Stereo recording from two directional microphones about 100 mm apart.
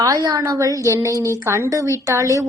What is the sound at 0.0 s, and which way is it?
A woman's voice, 35° right (ahead or behind).